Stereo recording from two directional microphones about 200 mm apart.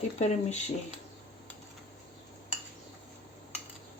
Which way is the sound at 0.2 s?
35° left (ahead or behind).